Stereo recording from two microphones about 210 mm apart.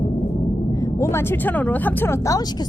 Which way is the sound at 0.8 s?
15° left (ahead or behind).